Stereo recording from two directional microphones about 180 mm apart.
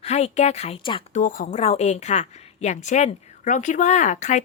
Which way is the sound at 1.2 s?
50° left (ahead or behind).